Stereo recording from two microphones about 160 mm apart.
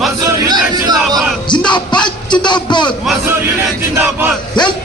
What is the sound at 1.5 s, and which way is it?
Music, 30° left (ahead or behind).